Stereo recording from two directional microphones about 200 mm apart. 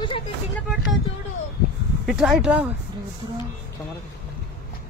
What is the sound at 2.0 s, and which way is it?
Speech, centre (ahead or behind).